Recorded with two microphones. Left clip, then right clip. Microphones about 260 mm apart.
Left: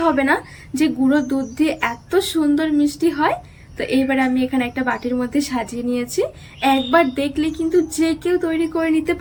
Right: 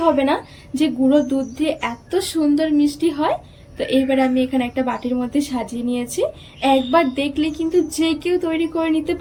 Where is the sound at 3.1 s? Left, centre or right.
Left.